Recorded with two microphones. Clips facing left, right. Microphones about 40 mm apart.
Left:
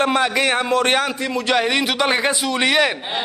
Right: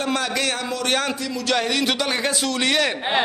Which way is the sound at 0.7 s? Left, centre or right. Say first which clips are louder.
Left 7 dB; left.